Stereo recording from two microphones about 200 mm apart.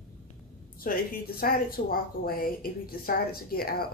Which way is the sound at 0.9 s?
45° left (ahead or behind).